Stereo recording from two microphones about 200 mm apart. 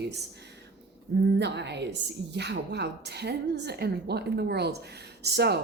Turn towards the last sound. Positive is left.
turn(degrees=-55)  # may be behind; listen again after turning